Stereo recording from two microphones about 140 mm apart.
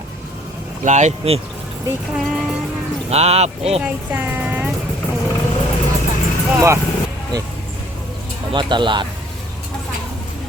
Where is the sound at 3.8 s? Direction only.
15° right (ahead or behind).